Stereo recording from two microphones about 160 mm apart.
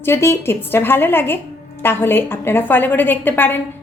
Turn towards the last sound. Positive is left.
turn(degrees=10)  # may be behind; listen again after turning